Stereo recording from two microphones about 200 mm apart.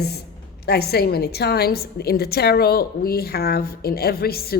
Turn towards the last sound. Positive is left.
turn(degrees=50)  # may be behind; listen again after turning